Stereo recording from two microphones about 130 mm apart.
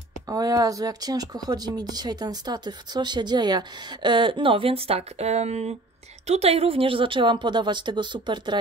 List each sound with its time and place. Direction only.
0.3 s speech: 30° right (ahead or behind)